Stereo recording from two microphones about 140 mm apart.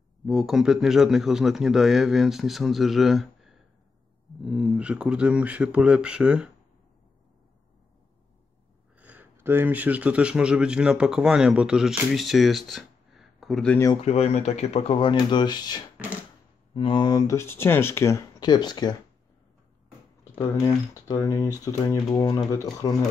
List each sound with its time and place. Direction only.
0.3 s a man's voice: 5° right (ahead or behind)
8.9 s speech: 10° right (ahead or behind)
14.0 s speech: 50° left (ahead or behind); by 18.9 s 30° left (ahead or behind)
20.3 s speech: 35° left (ahead or behind)
20.9 s speech: 25° left (ahead or behind)